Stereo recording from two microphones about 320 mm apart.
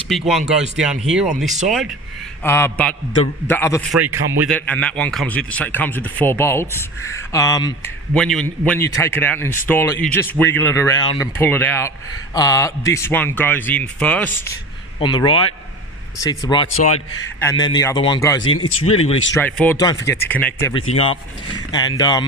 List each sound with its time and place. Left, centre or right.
0.1 s a man's voice: centre
4.0 s a man's voice: centre
16.7 s a man's voice: left
17.4 s a man's voice: centre
18.4 s speech: left
18.8 s a man's voice: centre